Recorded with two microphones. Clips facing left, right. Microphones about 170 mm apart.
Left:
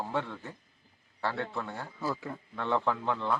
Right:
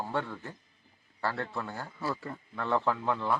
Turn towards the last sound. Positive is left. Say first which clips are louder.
# right 1 dB
turn(degrees=-5)  # may be behind; listen again after turning